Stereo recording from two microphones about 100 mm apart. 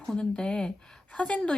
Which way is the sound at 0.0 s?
5° left (ahead or behind).